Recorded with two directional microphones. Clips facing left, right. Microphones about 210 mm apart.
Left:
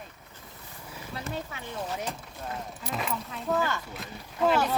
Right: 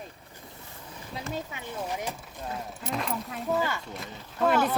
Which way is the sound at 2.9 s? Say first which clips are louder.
Right 2 dB; centre (ahead or behind).